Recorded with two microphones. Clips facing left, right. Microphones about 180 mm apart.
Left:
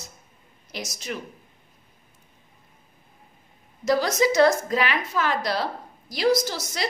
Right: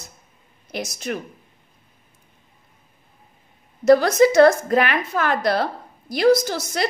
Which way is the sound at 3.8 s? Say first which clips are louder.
Right 8 dB; 55° right (ahead or behind).